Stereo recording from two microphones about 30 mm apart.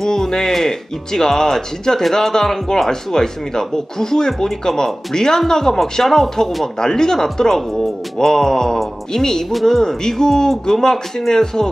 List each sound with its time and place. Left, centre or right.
0.0 s speech: centre
9.5 s speech: centre
9.8 s speech: centre